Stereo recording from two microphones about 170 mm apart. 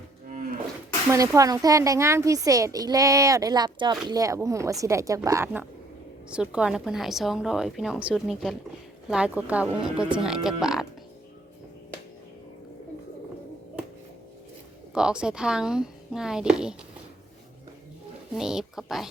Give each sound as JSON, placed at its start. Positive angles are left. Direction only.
{"t": 1.1, "sound": "a woman's voice", "side_deg": -20}
{"t": 6.3, "sound": "a woman's voice", "side_deg": -5}
{"t": 14.9, "sound": "a woman's voice", "side_deg": -5}
{"t": 18.3, "sound": "a woman's voice", "side_deg": -5}